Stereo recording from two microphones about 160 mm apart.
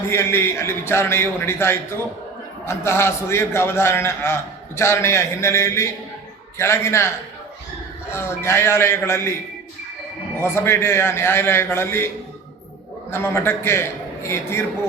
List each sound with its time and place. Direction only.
0.1 s a man's voice: 15° left (ahead or behind)
8.1 s a man's voice: 15° left (ahead or behind)
10.4 s a man's voice: 15° left (ahead or behind)
13.1 s a man's voice: 15° left (ahead or behind)